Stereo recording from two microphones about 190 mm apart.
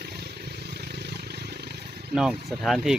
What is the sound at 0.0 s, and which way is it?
Vehicle, 55° right (ahead or behind).